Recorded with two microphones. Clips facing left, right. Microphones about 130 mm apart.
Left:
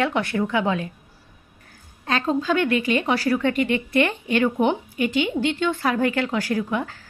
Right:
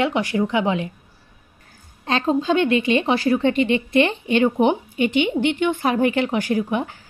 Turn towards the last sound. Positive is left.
turn(degrees=-20)  # may be behind; listen again after turning